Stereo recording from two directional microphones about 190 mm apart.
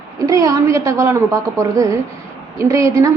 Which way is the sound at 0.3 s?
20° right (ahead or behind).